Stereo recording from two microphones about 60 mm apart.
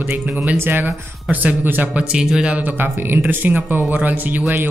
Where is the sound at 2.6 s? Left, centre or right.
Right.